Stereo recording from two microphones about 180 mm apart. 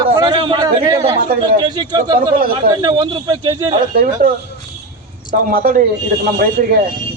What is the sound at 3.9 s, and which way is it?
Speech, 50° right (ahead or behind).